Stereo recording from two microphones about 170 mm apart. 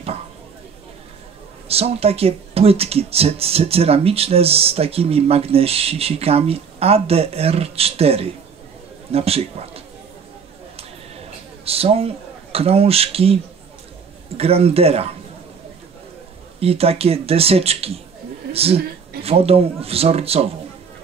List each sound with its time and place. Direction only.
1.7 s speech: 35° right (ahead or behind)
11.6 s speech: 35° right (ahead or behind)
16.5 s speech: 35° right (ahead or behind)